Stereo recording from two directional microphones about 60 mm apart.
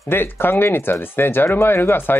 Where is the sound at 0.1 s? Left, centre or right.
Left.